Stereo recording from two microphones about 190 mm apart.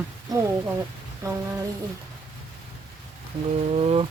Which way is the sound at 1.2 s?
15° right (ahead or behind).